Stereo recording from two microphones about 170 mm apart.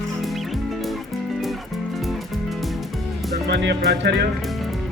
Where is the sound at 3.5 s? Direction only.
90° right.